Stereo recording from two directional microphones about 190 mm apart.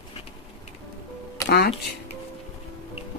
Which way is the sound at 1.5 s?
60° left (ahead or behind).